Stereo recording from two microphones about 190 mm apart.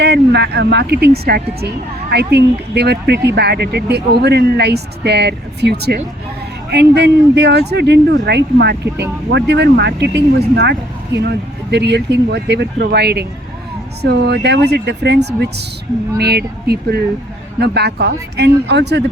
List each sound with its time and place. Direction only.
0.0 s speech: 60° right (ahead or behind)